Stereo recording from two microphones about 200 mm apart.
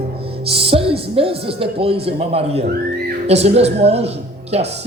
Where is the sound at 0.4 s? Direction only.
30° right (ahead or behind).